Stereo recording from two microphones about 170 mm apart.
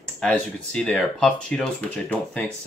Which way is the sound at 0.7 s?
5° left (ahead or behind).